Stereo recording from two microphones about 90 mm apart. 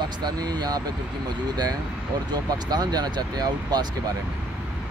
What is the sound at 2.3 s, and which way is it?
Speech, 50° right (ahead or behind).